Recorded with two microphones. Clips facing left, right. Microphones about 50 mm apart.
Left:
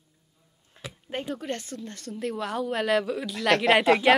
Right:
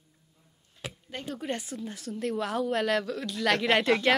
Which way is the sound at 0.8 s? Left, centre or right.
Left.